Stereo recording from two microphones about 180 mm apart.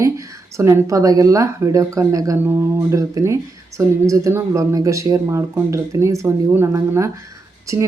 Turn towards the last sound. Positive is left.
turn(degrees=-15)  # may be behind; listen again after turning